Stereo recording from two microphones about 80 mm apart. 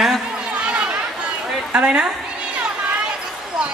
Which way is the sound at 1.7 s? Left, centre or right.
Centre.